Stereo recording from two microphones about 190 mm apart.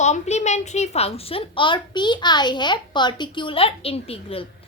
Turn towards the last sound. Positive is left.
turn(degrees=30)  # may be behind; listen again after turning